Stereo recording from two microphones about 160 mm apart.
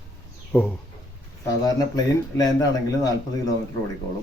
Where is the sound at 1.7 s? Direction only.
25° left (ahead or behind).